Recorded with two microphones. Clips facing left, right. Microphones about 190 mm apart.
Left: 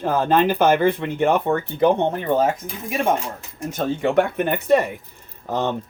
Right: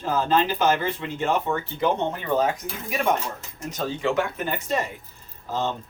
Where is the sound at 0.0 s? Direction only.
55° left (ahead or behind).